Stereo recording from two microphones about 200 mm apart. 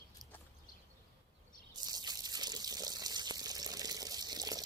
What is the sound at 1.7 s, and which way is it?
Water, 20° right (ahead or behind).